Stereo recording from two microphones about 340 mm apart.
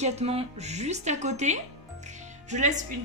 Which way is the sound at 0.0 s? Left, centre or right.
Centre.